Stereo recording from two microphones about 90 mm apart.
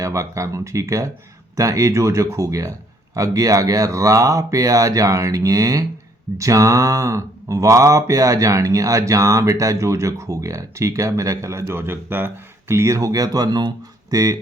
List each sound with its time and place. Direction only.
0.0 s speech: 35° right (ahead or behind)